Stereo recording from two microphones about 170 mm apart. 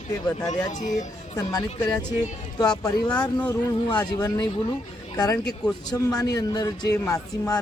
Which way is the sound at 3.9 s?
25° left (ahead or behind).